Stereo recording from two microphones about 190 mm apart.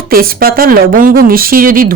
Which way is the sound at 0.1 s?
50° right (ahead or behind).